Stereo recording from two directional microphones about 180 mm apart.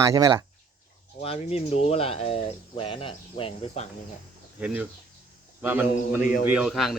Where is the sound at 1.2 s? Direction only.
35° left (ahead or behind).